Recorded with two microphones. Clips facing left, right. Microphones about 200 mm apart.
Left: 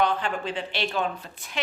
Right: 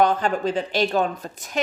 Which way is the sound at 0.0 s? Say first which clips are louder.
Right 6 dB; 45° right (ahead or behind).